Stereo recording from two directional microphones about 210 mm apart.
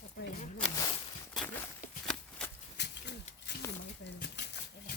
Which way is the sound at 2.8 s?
55° left (ahead or behind).